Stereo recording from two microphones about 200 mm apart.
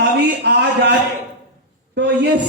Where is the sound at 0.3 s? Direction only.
60° right (ahead or behind).